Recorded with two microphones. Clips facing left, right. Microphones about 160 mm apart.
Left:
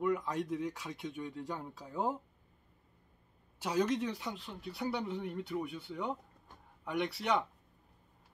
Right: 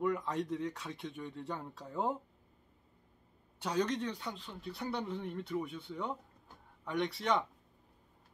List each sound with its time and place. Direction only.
0.0 s speech: centre (ahead or behind)
3.5 s speech: 5° left (ahead or behind)